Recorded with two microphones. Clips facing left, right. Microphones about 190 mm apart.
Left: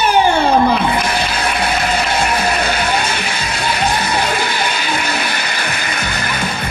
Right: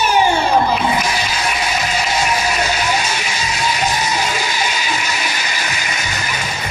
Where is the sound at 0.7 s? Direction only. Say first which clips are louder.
Left 2 dB; 60° left (ahead or behind).